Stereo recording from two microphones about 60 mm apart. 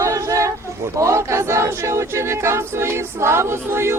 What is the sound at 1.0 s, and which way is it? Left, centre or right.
Choir, right.